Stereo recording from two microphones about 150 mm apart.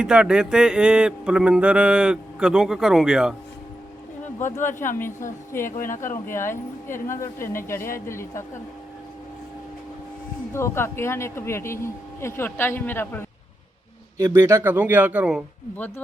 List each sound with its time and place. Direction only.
0.0 s speech: 5° right (ahead or behind)
4.9 s speech: 15° left (ahead or behind)
5.6 s speech: 65° left (ahead or behind)
6.0 s speech: 15° left (ahead or behind)
10.5 s speech: 15° left (ahead or behind)
14.2 s speech: 20° right (ahead or behind)